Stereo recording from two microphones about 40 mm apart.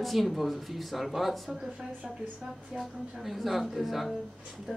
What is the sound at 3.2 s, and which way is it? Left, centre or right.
Speech, centre.